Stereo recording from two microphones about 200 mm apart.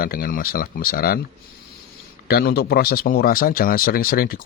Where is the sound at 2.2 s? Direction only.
50° left (ahead or behind).